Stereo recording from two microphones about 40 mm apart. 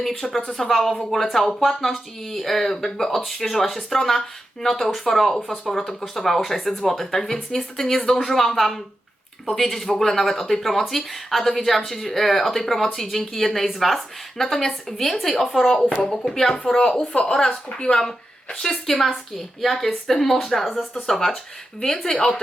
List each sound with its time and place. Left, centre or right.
0.7 s speech: centre; by 18.0 s left
18.6 s speech: centre